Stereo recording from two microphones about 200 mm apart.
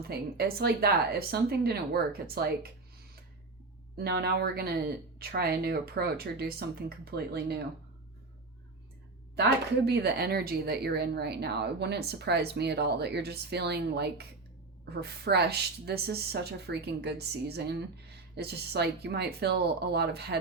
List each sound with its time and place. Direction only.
0.1 s a woman's voice: 50° right (ahead or behind)
3.9 s a woman's voice: 50° right (ahead or behind)
9.3 s a woman's voice: 55° right (ahead or behind)